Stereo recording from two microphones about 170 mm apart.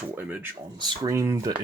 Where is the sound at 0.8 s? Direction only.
25° right (ahead or behind).